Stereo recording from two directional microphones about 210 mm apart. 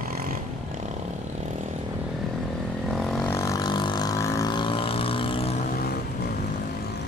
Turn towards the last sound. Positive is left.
turn(degrees=45)  # may be behind; listen again after turning